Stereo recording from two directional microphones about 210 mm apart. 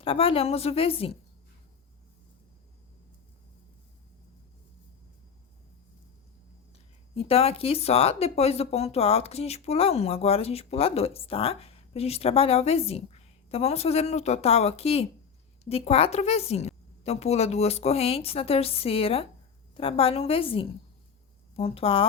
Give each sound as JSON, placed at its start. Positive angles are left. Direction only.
{"t": 0.0, "sound": "speech", "side_deg": 25}
{"t": 7.1, "sound": "speech", "side_deg": 30}